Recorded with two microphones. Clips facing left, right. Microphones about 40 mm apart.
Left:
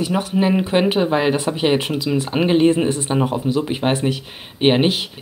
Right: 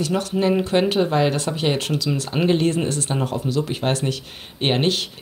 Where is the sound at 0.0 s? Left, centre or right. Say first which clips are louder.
Left 2 dB; centre.